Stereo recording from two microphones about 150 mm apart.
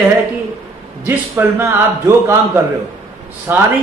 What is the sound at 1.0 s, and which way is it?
A man's voice, 15° right (ahead or behind).